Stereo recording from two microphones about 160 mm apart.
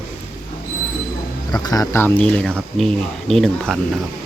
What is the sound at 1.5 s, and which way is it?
Speech, 25° left (ahead or behind).